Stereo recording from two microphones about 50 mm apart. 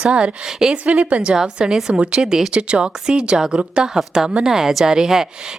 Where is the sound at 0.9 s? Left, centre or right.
Right.